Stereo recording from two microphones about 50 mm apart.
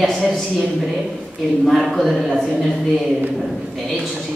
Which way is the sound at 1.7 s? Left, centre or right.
Centre.